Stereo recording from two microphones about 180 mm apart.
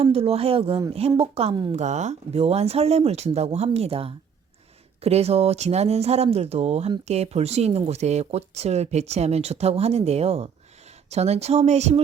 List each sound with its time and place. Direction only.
0.0 s speech: 35° right (ahead or behind)
1.7 s speech: 40° right (ahead or behind)